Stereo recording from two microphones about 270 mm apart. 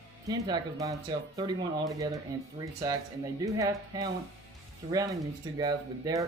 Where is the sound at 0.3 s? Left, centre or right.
Centre.